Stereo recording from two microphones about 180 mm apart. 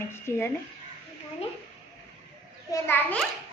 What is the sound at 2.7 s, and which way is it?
Speech, 15° left (ahead or behind).